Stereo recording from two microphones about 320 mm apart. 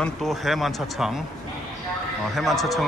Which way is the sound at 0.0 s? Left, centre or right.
Centre.